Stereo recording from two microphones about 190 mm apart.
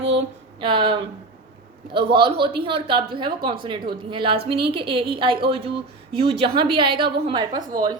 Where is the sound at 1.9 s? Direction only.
60° right (ahead or behind).